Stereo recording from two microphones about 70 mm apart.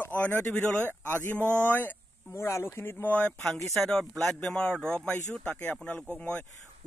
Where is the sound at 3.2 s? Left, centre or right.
Centre.